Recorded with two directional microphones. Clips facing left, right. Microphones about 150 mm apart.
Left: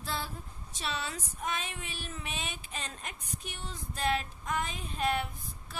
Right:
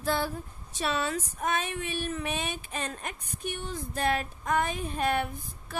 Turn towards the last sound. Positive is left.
turn(degrees=-55)  # may be behind; listen again after turning